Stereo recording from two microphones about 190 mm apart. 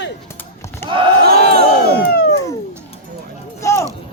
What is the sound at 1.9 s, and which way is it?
Crowd, 55° left (ahead or behind).